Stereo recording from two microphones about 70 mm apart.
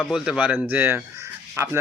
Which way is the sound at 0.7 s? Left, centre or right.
Right.